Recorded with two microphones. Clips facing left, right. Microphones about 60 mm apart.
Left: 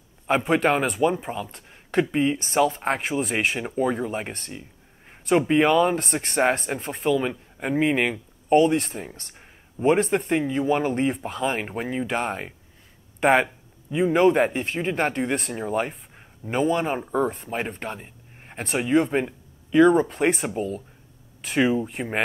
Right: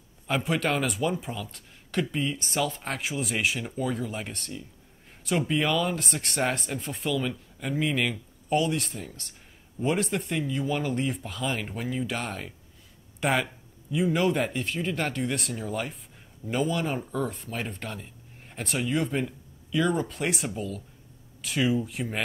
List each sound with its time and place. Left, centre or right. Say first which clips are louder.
0.3 s speech: left 6 dB; left
6.2 s speech: left 7 dB; left